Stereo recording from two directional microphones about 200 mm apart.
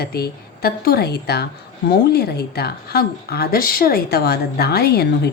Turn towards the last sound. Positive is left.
turn(degrees=55)  # may be behind; listen again after turning